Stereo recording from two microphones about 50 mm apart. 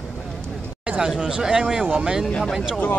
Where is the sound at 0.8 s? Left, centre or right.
Right.